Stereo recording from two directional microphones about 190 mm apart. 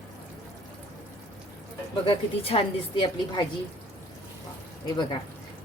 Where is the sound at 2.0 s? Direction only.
30° left (ahead or behind).